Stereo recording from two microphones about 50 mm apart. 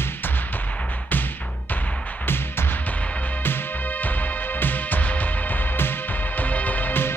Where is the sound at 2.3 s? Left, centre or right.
Left.